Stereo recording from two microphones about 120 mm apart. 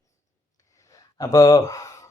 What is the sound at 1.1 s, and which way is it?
Speech, 30° left (ahead or behind).